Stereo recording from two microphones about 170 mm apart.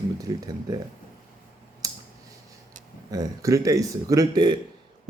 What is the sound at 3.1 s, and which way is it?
Speech, 20° right (ahead or behind).